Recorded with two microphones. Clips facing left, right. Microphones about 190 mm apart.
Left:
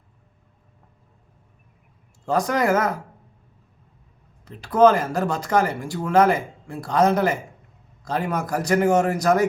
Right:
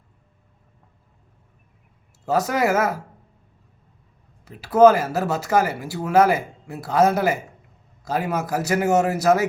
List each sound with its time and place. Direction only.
2.2 s speech: 5° right (ahead or behind)
4.4 s a man's voice: 5° right (ahead or behind)